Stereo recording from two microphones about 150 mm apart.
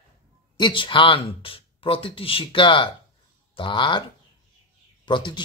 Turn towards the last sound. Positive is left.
turn(degrees=30)  # may be behind; listen again after turning